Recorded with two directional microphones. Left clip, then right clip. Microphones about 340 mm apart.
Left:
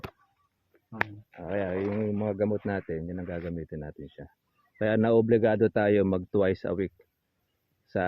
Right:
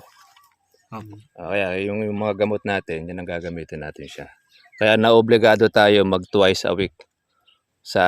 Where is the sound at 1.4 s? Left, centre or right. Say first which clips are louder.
Right 8 dB; centre.